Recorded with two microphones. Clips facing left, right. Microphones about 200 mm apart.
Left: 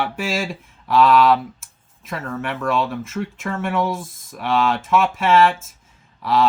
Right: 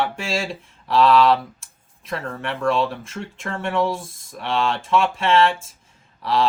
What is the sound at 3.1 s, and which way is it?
Speech, 5° left (ahead or behind).